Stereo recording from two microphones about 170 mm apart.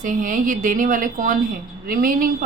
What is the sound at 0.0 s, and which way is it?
A woman's voice, 50° right (ahead or behind).